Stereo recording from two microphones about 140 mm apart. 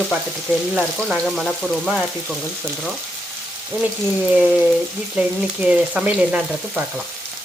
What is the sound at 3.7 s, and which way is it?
Frying, 10° right (ahead or behind).